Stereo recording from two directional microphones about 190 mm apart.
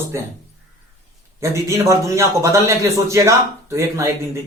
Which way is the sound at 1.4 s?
15° right (ahead or behind).